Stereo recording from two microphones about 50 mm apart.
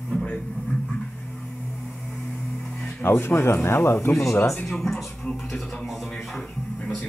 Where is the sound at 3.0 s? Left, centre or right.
Left.